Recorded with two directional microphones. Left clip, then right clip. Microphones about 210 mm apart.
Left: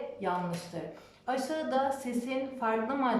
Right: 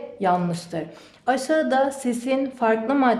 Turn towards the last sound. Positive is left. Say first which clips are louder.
# right 10 dB
turn(degrees=-45)  # may be behind; listen again after turning